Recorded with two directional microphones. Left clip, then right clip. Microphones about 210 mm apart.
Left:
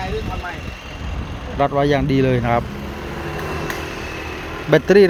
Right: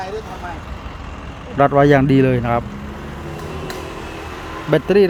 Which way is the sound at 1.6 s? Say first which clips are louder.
Right 5 dB; 15° right (ahead or behind).